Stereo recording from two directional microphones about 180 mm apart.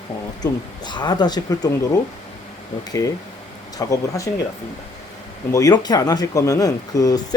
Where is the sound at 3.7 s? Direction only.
20° left (ahead or behind).